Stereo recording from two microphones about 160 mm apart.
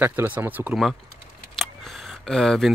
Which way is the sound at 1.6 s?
Centre (ahead or behind).